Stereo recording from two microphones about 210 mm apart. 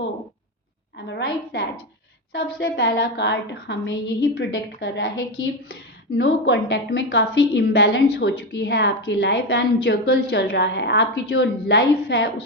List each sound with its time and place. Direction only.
0.9 s a woman's voice: 55° left (ahead or behind)
6.1 s a woman's voice: 55° left (ahead or behind)